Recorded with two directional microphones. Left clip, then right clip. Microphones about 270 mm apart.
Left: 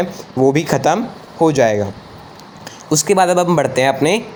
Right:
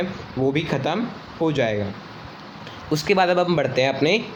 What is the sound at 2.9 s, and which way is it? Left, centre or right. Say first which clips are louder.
Speech: left 6 dB; left.